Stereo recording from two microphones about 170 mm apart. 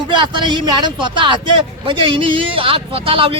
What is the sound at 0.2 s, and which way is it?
A man's voice, 25° right (ahead or behind).